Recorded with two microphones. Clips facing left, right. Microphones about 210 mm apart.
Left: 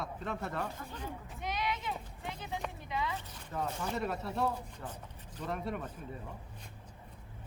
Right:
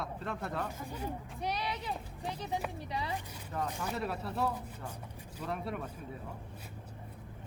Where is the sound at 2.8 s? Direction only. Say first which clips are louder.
Left 1 dB; 35° right (ahead or behind).